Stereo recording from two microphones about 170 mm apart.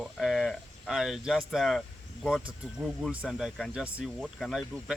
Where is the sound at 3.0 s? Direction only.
Centre (ahead or behind).